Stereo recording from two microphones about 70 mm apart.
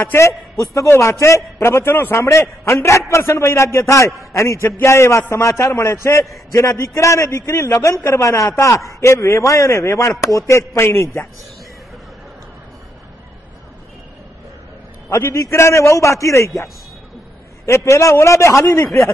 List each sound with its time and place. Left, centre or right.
0.0 s a man's voice: left
2.1 s speech: left
4.6 s a man's voice: left
15.0 s speech: left
17.6 s speech: left